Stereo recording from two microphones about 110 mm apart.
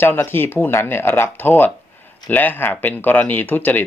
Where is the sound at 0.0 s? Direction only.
20° left (ahead or behind).